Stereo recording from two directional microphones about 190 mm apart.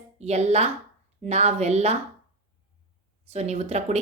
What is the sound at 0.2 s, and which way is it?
A woman's voice, 35° right (ahead or behind).